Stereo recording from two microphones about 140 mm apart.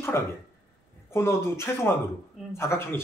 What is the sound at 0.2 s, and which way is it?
Speech, 15° left (ahead or behind).